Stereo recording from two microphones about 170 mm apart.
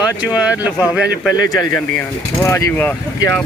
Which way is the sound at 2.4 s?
15° left (ahead or behind).